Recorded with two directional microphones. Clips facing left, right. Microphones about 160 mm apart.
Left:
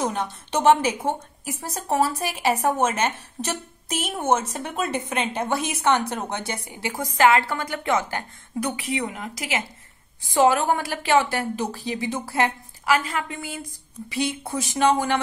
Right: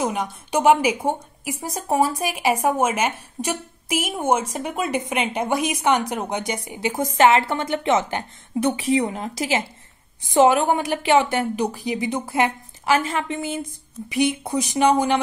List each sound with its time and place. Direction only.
0.0 s a woman's voice: 10° right (ahead or behind)